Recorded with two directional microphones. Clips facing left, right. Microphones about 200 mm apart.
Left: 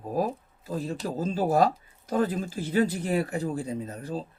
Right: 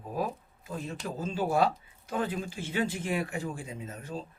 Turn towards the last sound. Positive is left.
turn(degrees=35)  # may be behind; listen again after turning